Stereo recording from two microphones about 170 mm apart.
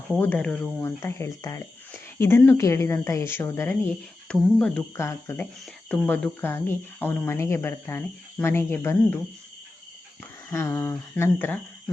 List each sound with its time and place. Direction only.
0.2 s speech: 10° left (ahead or behind)
10.5 s speech: 15° left (ahead or behind)